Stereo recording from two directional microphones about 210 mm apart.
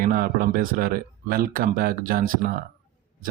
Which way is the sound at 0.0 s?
45° right (ahead or behind).